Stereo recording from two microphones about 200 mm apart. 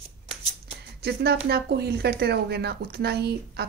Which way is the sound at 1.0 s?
50° right (ahead or behind).